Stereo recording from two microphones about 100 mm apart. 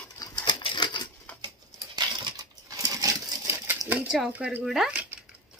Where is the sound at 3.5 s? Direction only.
20° right (ahead or behind).